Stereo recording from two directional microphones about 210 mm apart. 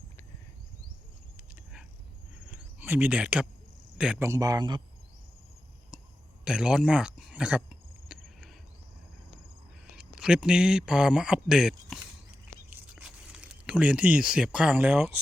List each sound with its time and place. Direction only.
2.5 s cricket: 10° right (ahead or behind)
3.9 s speech: 5° right (ahead or behind); by 4.8 s 20° right (ahead or behind)
5.9 s a sound: 5° right (ahead or behind)
6.4 s cricket: 5° right (ahead or behind)
9.9 s speech: 5° right (ahead or behind)
12.7 s crunch: 5° right (ahead or behind)